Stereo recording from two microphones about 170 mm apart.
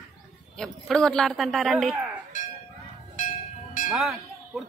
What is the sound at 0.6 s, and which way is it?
Speech, 5° left (ahead or behind).